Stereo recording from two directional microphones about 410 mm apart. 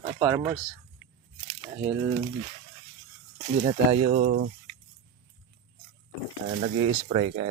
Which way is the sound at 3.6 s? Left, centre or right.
Centre.